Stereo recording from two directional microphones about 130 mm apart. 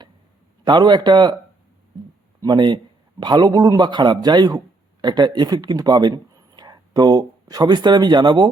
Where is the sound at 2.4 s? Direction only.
35° right (ahead or behind).